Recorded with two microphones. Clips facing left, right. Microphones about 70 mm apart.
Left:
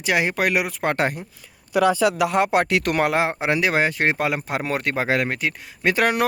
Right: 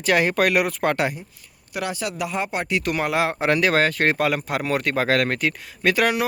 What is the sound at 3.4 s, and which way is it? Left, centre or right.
Speech, centre.